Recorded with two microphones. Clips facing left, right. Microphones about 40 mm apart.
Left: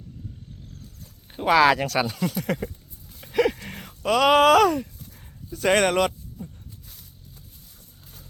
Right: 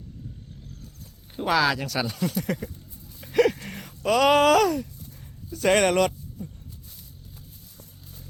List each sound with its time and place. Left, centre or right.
1.5 s speech: left
2.0 s speech: centre
3.2 s a sound: centre
5.5 s speech: centre